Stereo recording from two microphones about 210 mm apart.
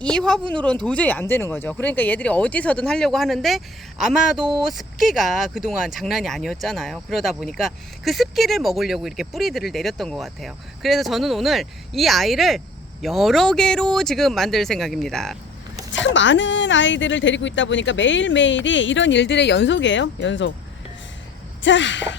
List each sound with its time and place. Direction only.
0.0 s speech: 5° left (ahead or behind)
15.9 s a woman's voice: 60° left (ahead or behind)
21.6 s a woman's voice: 60° left (ahead or behind)